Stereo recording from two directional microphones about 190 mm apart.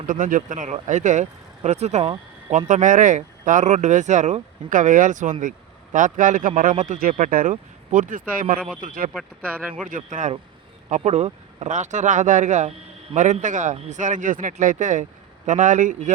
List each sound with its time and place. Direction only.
0.1 s a man's voice: 45° right (ahead or behind)
9.1 s speech: 5° right (ahead or behind)
9.8 s a man's voice: 45° right (ahead or behind)